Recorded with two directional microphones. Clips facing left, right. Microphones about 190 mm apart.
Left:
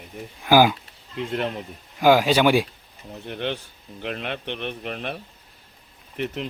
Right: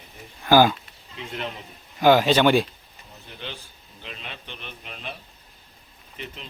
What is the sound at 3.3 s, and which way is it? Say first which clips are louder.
A man's voice: left 10 dB; 65° left (ahead or behind).